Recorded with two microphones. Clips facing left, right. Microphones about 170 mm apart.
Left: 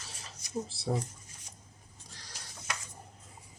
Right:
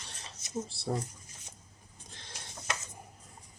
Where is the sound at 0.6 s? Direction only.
Centre (ahead or behind).